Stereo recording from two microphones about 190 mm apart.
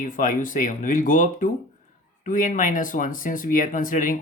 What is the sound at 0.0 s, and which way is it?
Speech, 45° left (ahead or behind).